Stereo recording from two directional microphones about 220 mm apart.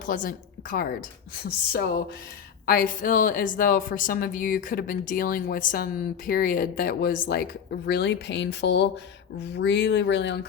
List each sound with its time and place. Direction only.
0.0 s a woman's voice: 40° left (ahead or behind)